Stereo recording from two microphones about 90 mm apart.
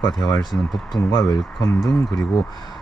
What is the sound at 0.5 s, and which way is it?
Speech, 25° left (ahead or behind).